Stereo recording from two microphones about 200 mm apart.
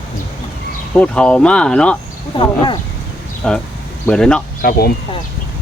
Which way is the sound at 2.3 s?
25° left (ahead or behind).